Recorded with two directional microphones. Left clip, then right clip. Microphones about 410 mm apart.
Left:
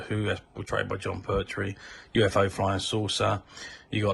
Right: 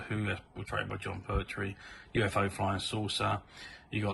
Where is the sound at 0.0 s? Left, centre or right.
Centre.